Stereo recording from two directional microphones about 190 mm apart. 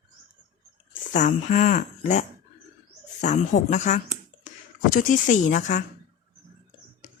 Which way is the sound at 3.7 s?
35° left (ahead or behind).